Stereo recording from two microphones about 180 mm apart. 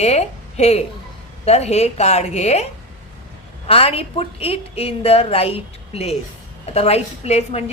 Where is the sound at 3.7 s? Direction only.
30° left (ahead or behind).